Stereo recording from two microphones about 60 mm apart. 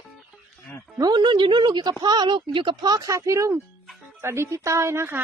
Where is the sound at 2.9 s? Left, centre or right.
Right.